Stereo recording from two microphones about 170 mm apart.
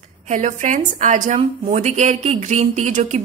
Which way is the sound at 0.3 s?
45° right (ahead or behind).